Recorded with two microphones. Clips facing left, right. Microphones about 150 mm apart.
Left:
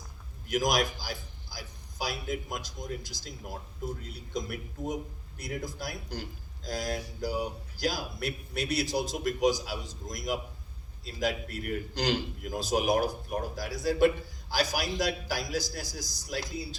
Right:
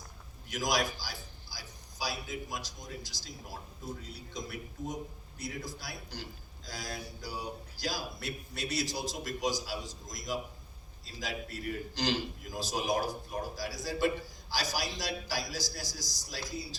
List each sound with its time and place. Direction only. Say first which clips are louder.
0.4 s a man's voice: left 4 dB; 50° left (ahead or behind)